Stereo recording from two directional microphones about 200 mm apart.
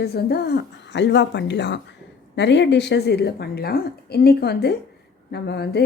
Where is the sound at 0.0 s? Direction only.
55° left (ahead or behind).